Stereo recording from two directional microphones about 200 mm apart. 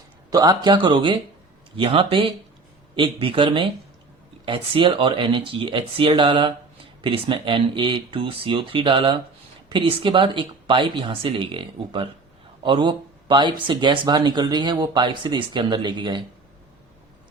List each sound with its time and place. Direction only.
0.3 s speech: 20° right (ahead or behind)